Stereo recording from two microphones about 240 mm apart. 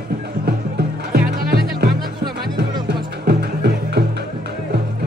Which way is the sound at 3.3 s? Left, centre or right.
Right.